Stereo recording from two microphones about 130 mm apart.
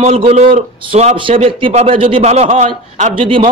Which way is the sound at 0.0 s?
60° right (ahead or behind).